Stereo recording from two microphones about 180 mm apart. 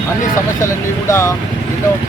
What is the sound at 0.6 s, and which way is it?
Speech, 15° left (ahead or behind).